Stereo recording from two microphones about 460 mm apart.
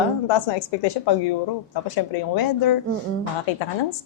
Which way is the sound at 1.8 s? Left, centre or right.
Left.